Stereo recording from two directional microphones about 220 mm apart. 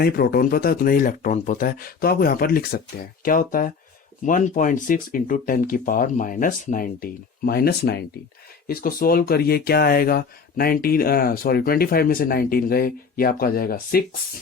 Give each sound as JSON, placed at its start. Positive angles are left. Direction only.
{"t": 0.0, "sound": "speech", "side_deg": 45}